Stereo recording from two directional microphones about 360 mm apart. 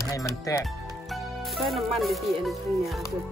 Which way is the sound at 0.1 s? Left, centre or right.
Centre.